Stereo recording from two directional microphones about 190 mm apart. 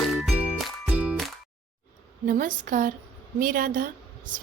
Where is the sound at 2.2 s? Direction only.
45° right (ahead or behind).